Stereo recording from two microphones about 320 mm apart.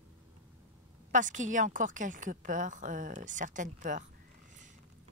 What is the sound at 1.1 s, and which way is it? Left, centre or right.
Speech, right.